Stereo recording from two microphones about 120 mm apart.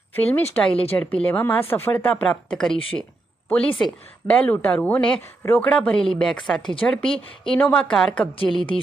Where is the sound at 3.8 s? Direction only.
10° left (ahead or behind).